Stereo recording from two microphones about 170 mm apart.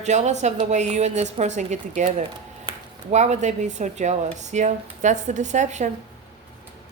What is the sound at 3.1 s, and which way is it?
Speech, 40° right (ahead or behind).